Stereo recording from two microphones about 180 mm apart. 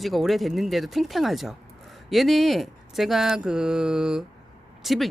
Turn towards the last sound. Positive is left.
turn(degrees=0)  # may be behind; listen again after turning